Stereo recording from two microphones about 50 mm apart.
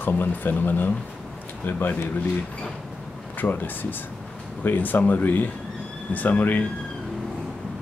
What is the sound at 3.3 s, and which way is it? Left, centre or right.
Speech, left.